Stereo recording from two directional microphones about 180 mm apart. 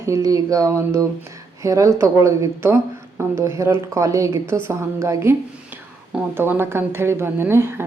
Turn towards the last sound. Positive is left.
turn(degrees=-15)  # may be behind; listen again after turning